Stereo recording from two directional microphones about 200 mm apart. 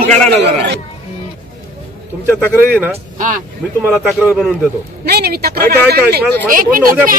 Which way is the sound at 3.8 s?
Centre (ahead or behind).